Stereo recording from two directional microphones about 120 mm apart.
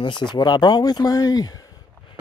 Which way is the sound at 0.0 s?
40° left (ahead or behind).